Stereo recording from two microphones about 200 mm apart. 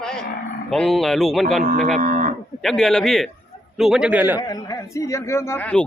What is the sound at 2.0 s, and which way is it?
Cattle, 40° right (ahead or behind).